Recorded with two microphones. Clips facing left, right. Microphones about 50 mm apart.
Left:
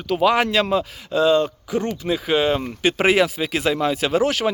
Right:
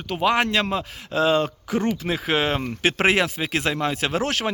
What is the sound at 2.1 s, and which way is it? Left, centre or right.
Speech, right.